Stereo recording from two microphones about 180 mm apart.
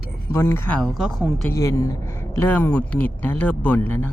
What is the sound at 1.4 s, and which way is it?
Speech, 15° left (ahead or behind).